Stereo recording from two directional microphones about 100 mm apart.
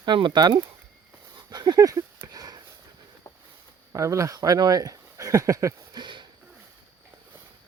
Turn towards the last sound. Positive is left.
turn(degrees=-50)  # may be behind; listen again after turning